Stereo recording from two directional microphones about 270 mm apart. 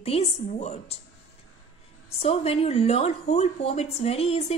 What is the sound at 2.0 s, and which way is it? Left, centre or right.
A woman's voice, left.